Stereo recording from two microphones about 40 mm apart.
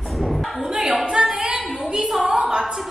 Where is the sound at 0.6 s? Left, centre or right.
Centre.